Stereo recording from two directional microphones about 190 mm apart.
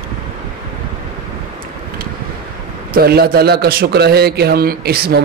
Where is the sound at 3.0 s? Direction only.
55° right (ahead or behind).